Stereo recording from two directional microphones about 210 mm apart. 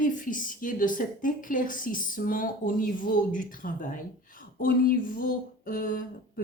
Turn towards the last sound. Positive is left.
turn(degrees=40)  # may be behind; listen again after turning